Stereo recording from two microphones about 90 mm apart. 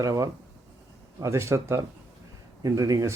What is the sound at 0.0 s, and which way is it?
Speech, 40° right (ahead or behind).